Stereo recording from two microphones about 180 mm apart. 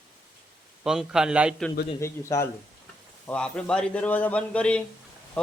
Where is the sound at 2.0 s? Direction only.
15° left (ahead or behind).